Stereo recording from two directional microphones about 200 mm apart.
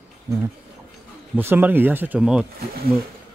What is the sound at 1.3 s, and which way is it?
Speech, 10° right (ahead or behind).